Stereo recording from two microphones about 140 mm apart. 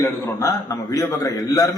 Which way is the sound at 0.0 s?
20° left (ahead or behind).